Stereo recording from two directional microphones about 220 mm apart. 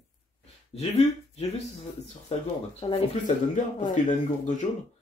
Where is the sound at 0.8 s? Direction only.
30° left (ahead or behind).